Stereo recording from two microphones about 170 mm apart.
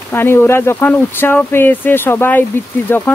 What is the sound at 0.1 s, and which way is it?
Speech, 15° left (ahead or behind).